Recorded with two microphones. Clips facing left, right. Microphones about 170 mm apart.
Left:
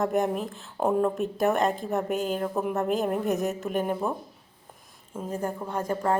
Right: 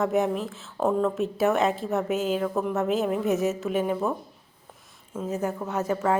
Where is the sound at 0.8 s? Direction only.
15° left (ahead or behind).